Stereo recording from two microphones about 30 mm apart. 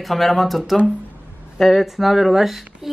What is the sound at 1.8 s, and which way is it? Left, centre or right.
Speech, centre.